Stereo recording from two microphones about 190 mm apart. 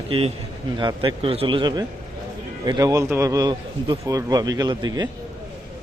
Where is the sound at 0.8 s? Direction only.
25° right (ahead or behind).